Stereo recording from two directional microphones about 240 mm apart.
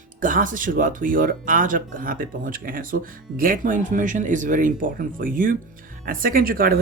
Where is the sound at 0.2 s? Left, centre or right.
Right.